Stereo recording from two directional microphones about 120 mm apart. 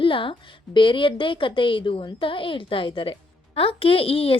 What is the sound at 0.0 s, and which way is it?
A woman's voice, 45° left (ahead or behind).